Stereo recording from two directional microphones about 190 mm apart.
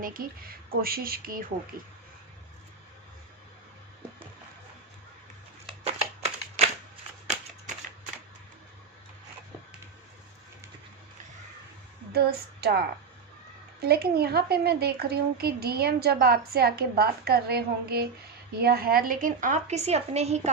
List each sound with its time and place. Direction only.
0.0 s speech: 50° right (ahead or behind)
12.1 s speech: 55° right (ahead or behind)
13.8 s a woman's voice: 55° right (ahead or behind); by 20.5 s 35° right (ahead or behind)